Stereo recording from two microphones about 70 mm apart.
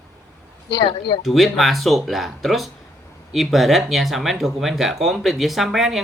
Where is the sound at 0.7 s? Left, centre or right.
Left.